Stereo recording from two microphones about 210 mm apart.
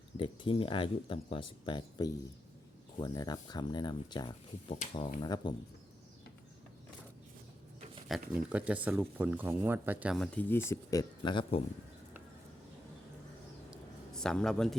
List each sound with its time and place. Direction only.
0.2 s speech: 25° left (ahead or behind)
8.3 s speech: 5° right (ahead or behind); by 11.6 s 20° left (ahead or behind)
13.7 s a sound: centre (ahead or behind)